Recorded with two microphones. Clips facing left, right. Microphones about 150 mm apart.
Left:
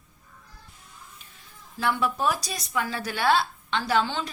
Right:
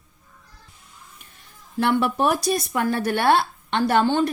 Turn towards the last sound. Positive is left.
turn(degrees=-55)  # may be behind; listen again after turning